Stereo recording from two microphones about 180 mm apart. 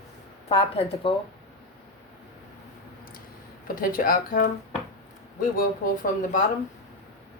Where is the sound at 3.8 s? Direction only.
50° left (ahead or behind).